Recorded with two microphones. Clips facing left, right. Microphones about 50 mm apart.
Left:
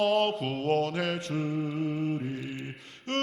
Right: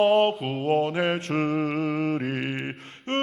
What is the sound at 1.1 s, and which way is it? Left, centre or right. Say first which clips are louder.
Mantra: right 6 dB; right.